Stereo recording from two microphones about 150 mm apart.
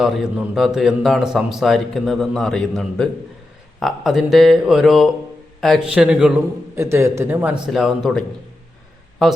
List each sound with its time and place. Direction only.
0.0 s a man's voice: 5° right (ahead or behind)
6.7 s speech: 20° right (ahead or behind)
7.7 s a man's voice: centre (ahead or behind)
9.2 s a man's voice: centre (ahead or behind)